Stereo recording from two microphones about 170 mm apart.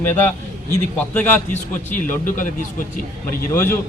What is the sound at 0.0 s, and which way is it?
A man's voice, 10° left (ahead or behind).